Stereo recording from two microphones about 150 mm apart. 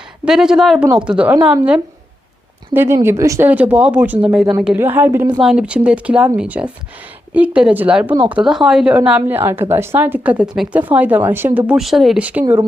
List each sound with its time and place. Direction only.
0.3 s a woman's voice: 5° right (ahead or behind)
2.7 s a woman's voice: 15° right (ahead or behind)
5.4 s a woman's voice: 5° right (ahead or behind)